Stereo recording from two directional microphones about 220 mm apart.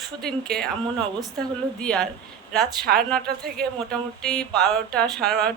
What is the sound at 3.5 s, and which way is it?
Speech, 5° left (ahead or behind).